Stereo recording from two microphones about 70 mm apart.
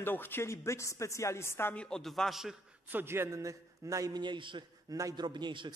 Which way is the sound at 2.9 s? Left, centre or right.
Right.